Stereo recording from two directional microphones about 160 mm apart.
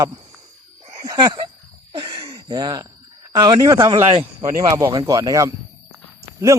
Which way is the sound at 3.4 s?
20° right (ahead or behind).